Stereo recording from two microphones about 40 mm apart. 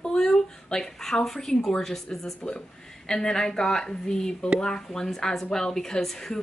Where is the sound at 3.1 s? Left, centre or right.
Centre.